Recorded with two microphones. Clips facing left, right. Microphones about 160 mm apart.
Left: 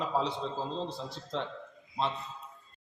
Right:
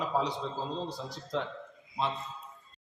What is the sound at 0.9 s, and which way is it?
Speech, 25° left (ahead or behind).